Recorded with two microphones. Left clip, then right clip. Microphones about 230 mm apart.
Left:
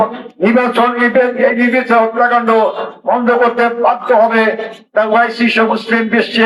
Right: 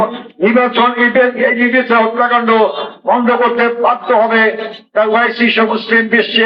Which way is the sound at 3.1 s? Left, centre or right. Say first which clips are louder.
Even; left.